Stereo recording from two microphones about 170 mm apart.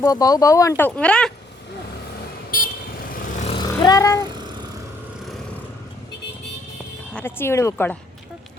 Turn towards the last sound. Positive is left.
turn(degrees=15)  # may be behind; listen again after turning